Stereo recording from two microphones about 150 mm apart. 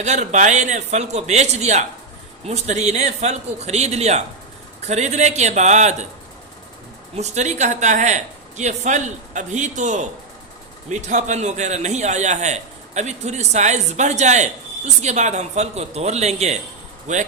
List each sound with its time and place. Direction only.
0.0 s a man's voice: 50° right (ahead or behind)
7.2 s a man's voice: 50° right (ahead or behind)